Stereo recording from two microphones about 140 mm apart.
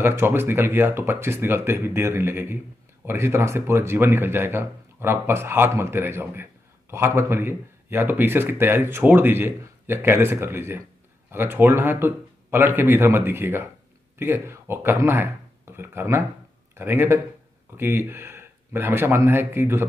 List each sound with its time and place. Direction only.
0.0 s speech: 15° right (ahead or behind)